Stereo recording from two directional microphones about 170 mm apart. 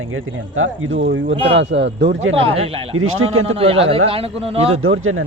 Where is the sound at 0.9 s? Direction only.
90° right.